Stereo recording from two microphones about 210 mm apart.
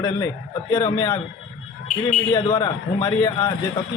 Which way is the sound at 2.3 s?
20° left (ahead or behind).